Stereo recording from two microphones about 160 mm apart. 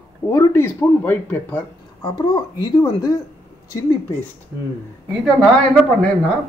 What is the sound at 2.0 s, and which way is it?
Speech, 25° left (ahead or behind).